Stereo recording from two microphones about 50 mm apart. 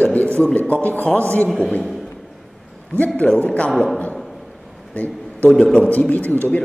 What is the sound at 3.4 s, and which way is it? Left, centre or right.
Speech, left.